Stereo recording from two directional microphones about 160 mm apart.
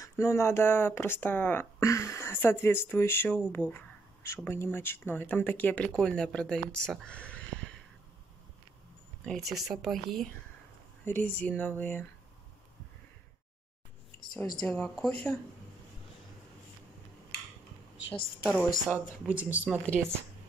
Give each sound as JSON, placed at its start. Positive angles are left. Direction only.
{"t": 0.0, "sound": "speech", "side_deg": 20}
{"t": 9.2, "sound": "speech", "side_deg": 0}
{"t": 11.1, "sound": "speech", "side_deg": 10}
{"t": 14.6, "sound": "speech", "side_deg": 5}
{"t": 18.0, "sound": "a woman's voice", "side_deg": 75}
{"t": 18.4, "sound": "speech", "side_deg": 10}
{"t": 19.2, "sound": "speech", "side_deg": -10}